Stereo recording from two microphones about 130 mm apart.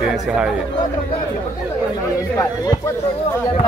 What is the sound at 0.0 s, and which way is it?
Speech, 5° right (ahead or behind).